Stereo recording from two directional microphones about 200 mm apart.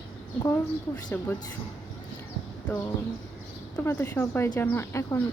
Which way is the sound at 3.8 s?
10° left (ahead or behind).